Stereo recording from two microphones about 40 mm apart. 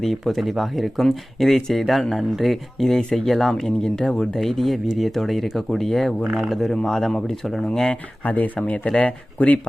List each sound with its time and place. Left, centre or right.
0.0 s speech: centre
6.2 s speech: centre
6.5 s speech: centre
7.6 s speech: centre
8.2 s speech: left